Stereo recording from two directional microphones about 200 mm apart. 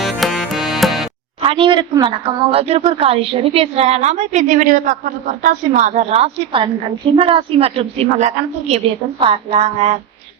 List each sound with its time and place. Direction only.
0.0 s music: centre (ahead or behind)
1.4 s a woman's voice: 25° right (ahead or behind)